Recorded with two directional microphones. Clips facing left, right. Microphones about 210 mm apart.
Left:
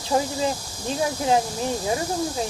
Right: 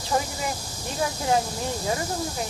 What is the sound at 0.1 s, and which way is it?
Speech, 20° left (ahead or behind).